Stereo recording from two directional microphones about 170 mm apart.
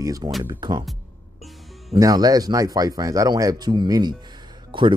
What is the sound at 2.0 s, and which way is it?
Speech, 20° right (ahead or behind).